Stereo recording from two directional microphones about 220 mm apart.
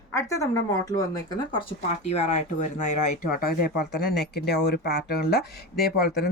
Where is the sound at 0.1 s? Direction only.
15° left (ahead or behind).